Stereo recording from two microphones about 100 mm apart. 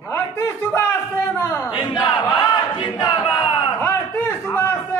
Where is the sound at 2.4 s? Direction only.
55° left (ahead or behind).